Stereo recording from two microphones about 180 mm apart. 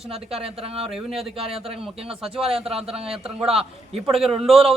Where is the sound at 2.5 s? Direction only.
35° right (ahead or behind).